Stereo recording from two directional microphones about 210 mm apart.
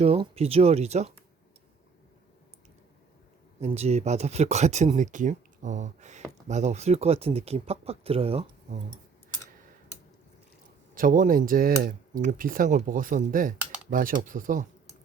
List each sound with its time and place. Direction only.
0.0 s speech: 30° right (ahead or behind)
3.6 s speech: 30° right (ahead or behind)
10.9 s speech: 40° right (ahead or behind)